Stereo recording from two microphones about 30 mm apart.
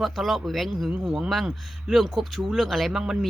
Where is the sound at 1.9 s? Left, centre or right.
Centre.